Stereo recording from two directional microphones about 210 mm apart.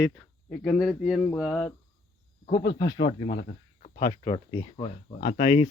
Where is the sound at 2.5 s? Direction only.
65° left (ahead or behind).